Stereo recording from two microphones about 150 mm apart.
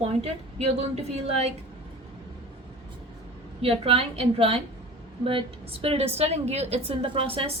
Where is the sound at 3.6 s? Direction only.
40° right (ahead or behind).